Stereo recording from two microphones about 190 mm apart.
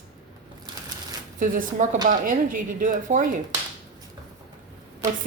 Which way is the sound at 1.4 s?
40° right (ahead or behind).